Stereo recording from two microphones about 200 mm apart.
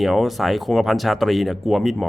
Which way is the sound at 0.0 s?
Centre (ahead or behind).